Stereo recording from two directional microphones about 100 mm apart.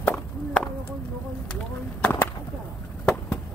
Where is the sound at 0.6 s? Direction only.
10° left (ahead or behind).